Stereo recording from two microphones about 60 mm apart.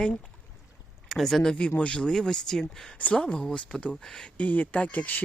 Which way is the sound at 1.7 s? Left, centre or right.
Left.